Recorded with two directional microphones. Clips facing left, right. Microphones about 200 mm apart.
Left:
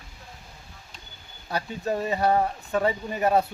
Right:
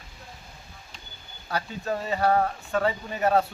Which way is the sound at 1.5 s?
15° left (ahead or behind).